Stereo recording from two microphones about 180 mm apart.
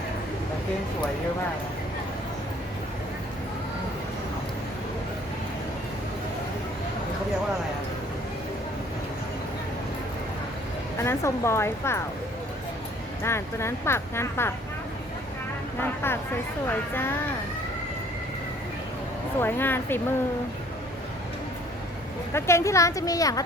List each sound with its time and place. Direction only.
10.9 s speech: 15° left (ahead or behind)
13.2 s speech: 15° left (ahead or behind)
16.0 s speech: 10° left (ahead or behind)
19.4 s speech: 10° left (ahead or behind)
22.3 s speech: 15° left (ahead or behind)